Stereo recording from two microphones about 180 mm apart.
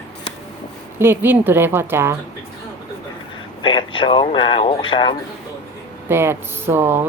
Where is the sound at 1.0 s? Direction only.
10° right (ahead or behind).